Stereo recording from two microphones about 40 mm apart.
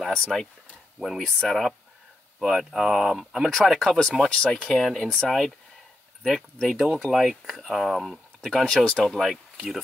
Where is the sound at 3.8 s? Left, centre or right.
Centre.